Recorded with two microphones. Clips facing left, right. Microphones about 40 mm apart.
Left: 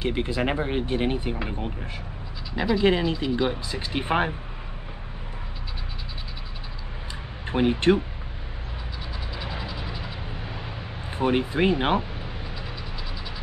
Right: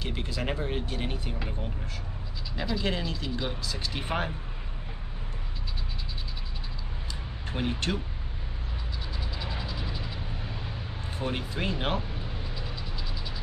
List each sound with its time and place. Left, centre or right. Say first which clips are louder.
0.0 s speech: left 8 dB; left
7.4 s speech: left 11 dB; left
9.3 s mechanisms: left 4 dB; centre
11.1 s speech: left 10 dB; left